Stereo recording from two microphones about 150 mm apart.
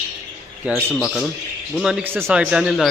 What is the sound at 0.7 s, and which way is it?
A man's voice, 5° right (ahead or behind).